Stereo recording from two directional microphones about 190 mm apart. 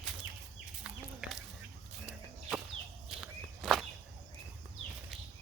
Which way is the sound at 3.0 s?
Centre (ahead or behind).